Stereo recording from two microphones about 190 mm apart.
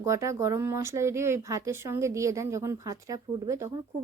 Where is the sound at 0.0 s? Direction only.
15° right (ahead or behind).